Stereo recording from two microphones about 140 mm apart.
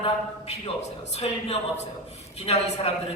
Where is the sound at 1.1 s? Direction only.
50° left (ahead or behind).